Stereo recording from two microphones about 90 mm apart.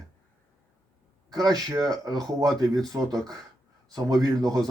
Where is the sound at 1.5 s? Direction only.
45° right (ahead or behind).